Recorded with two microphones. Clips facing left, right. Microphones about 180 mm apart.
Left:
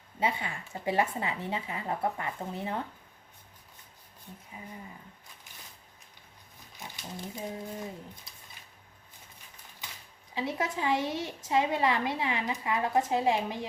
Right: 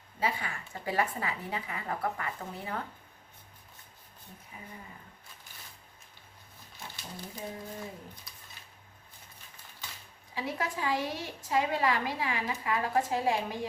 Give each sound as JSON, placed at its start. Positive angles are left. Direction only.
{"t": 0.2, "sound": "a woman's voice", "side_deg": 25}
{"t": 6.7, "sound": "a woman's voice", "side_deg": 15}
{"t": 10.3, "sound": "a woman's voice", "side_deg": 20}